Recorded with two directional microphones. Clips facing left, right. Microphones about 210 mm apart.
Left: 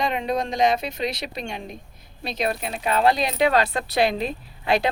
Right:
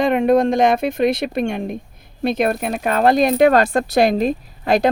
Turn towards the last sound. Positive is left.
turn(degrees=-45)  # may be behind; listen again after turning